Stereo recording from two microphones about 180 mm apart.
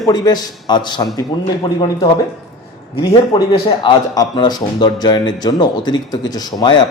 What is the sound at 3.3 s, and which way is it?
Speech, 25° left (ahead or behind).